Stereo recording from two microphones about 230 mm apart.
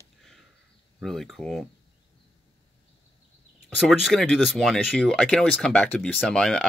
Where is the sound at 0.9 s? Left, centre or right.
Centre.